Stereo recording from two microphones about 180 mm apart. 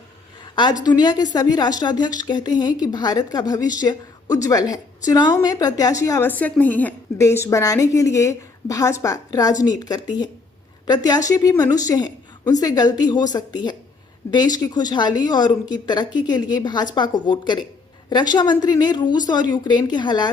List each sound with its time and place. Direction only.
0.5 s a woman's voice: 25° left (ahead or behind)